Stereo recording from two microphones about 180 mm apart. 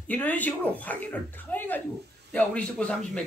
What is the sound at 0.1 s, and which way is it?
A man's voice, 10° left (ahead or behind).